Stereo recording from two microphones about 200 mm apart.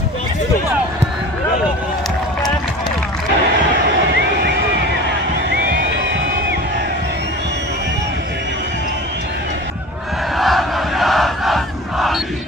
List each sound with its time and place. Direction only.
5.5 s music: 50° right (ahead or behind)
10.3 s battle cry: centre (ahead or behind)